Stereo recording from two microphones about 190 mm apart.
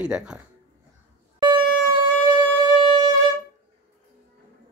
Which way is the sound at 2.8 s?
25° right (ahead or behind).